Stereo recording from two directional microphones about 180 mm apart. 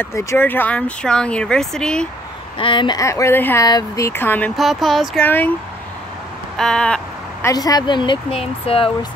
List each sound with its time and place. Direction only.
0.0 s speech: 15° left (ahead or behind)
2.6 s speech: 25° left (ahead or behind)
4.6 s speech: centre (ahead or behind)
6.5 s a sound: 5° left (ahead or behind)
7.4 s speech: 20° left (ahead or behind)